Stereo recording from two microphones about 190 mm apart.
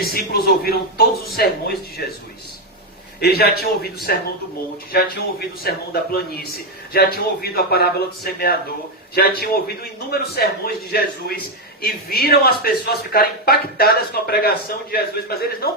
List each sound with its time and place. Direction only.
0.0 s speech: 55° left (ahead or behind)
3.2 s a man's voice: 55° left (ahead or behind)